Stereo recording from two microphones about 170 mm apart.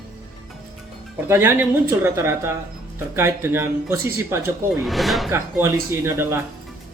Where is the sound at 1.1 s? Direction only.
15° right (ahead or behind).